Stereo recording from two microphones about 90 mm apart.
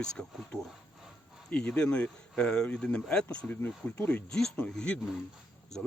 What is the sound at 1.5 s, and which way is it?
Speech, 10° left (ahead or behind).